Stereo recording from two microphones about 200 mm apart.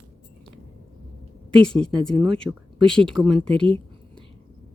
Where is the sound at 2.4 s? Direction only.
5° right (ahead or behind).